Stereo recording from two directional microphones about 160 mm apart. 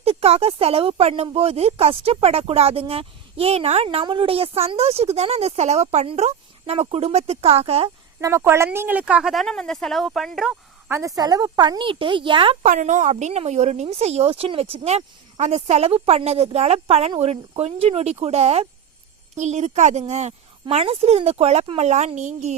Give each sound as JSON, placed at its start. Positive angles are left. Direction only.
{"t": 0.0, "sound": "speech", "side_deg": -40}
{"t": 8.2, "sound": "speech", "side_deg": -15}
{"t": 10.8, "sound": "speech", "side_deg": -20}
{"t": 12.6, "sound": "speech", "side_deg": -50}